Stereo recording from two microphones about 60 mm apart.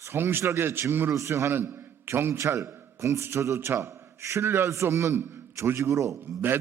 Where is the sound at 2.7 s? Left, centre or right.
Right.